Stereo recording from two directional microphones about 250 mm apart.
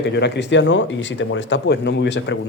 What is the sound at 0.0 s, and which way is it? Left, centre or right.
Speech, left.